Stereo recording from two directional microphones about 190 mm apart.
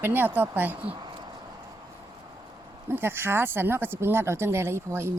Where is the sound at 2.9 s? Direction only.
10° right (ahead or behind).